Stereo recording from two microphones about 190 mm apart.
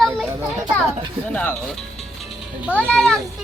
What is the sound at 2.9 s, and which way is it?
Speech, 5° left (ahead or behind).